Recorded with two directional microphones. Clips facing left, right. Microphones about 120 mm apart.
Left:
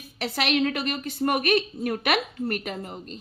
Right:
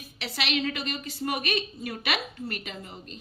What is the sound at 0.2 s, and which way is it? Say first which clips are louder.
A woman's voice: left 6 dB; 50° left (ahead or behind).